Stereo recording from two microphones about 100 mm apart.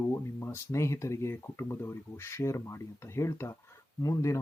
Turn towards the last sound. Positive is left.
turn(degrees=35)  # may be behind; listen again after turning